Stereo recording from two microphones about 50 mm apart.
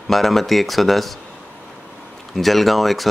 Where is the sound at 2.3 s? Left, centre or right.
Centre.